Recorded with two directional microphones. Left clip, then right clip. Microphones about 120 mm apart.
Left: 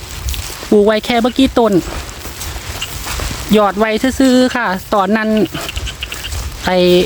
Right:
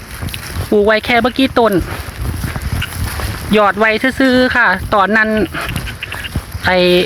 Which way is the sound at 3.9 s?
55° left (ahead or behind).